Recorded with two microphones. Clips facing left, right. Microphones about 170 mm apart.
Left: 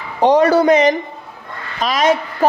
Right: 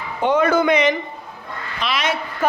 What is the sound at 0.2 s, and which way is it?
A woman's voice, 35° left (ahead or behind).